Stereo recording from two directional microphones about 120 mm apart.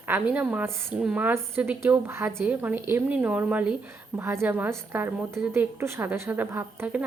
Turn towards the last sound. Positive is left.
turn(degrees=-15)  # may be behind; listen again after turning